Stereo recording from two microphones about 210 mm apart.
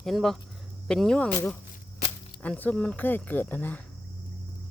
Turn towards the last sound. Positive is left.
turn(degrees=10)  # may be behind; listen again after turning